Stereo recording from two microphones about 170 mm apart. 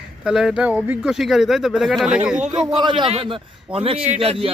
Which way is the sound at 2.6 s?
25° right (ahead or behind).